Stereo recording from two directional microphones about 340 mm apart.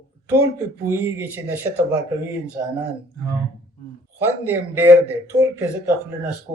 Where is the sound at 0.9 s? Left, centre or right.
Centre.